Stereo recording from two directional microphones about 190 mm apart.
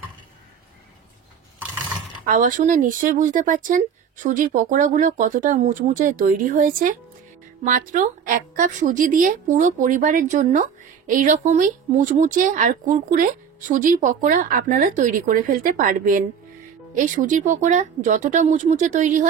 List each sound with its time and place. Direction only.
2.2 s a woman's voice: 45° right (ahead or behind)